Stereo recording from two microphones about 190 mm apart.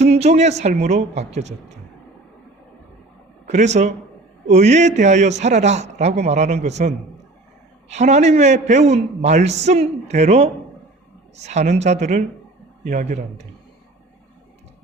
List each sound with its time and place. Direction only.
0.0 s a man's voice: 35° right (ahead or behind)
3.4 s a man's voice: 35° right (ahead or behind)